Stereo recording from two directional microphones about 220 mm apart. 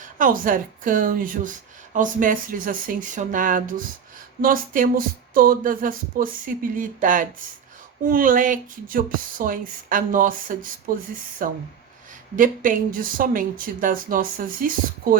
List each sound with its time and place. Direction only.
0.0 s speech: 40° right (ahead or behind)